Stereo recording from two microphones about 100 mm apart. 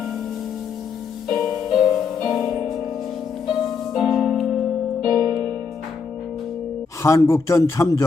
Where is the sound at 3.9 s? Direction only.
Centre (ahead or behind).